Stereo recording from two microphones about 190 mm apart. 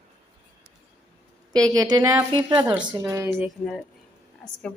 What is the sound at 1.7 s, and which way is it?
A woman's voice, 20° right (ahead or behind).